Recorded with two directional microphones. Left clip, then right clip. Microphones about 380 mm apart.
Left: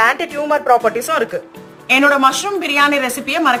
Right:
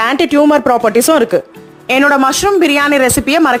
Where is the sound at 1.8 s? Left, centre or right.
Centre.